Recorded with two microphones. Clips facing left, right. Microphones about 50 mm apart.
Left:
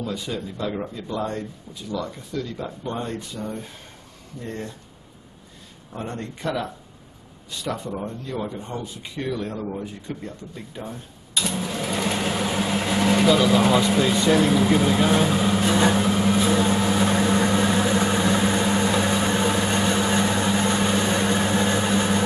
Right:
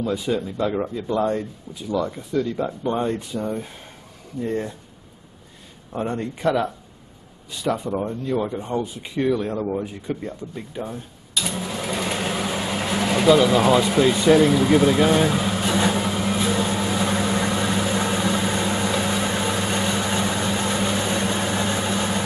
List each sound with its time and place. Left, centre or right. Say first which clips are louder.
0.0 s speech: right 6 dB; centre
5.9 s speech: right 6 dB; centre
7.7 s speech: right 5 dB; centre
11.5 s vehicle: even; centre